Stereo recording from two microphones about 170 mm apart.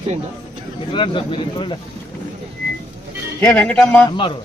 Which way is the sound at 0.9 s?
30° left (ahead or behind).